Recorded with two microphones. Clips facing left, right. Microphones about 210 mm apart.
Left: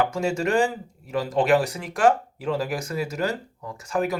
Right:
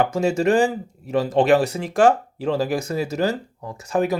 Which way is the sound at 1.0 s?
25° right (ahead or behind).